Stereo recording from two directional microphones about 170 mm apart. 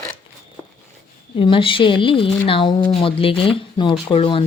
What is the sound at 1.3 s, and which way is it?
Speech, 30° left (ahead or behind).